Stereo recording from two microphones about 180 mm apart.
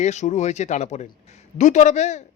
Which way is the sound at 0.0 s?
40° left (ahead or behind).